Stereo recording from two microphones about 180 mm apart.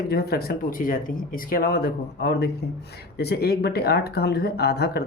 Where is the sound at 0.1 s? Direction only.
60° left (ahead or behind).